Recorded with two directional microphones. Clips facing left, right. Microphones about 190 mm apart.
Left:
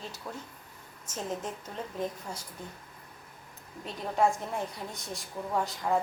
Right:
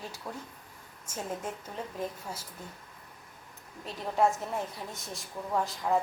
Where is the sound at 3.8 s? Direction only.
Centre (ahead or behind).